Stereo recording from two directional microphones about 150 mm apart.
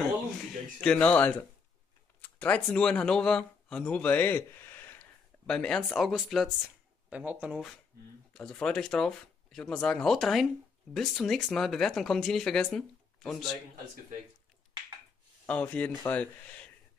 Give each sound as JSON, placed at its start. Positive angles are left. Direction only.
{"t": 0.0, "sound": "a sound", "side_deg": 5}
{"t": 2.2, "sound": "speech", "side_deg": 10}
{"t": 8.3, "sound": "speech", "side_deg": 5}
{"t": 15.4, "sound": "speech", "side_deg": 10}